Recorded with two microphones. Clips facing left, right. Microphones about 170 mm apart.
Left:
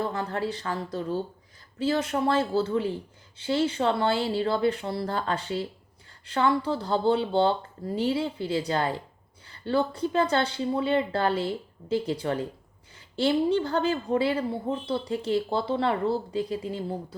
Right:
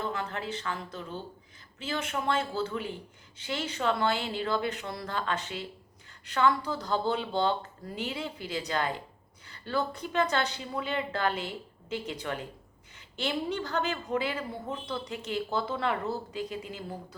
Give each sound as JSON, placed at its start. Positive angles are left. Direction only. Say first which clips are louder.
{"t": 0.0, "sound": "speech", "louder": "left 5 dB", "side_deg": 35}